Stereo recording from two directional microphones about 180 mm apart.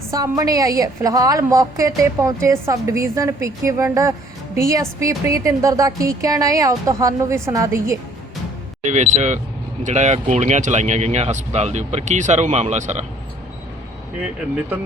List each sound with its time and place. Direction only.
0.1 s a woman's voice: 20° right (ahead or behind)
8.8 s speech: 40° right (ahead or behind)
14.2 s a woman's voice: 10° right (ahead or behind)